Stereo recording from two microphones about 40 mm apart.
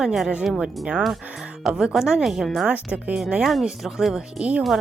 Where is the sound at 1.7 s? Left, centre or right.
Right.